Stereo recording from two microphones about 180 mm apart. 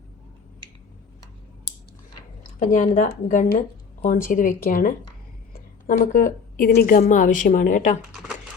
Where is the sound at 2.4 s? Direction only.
45° left (ahead or behind).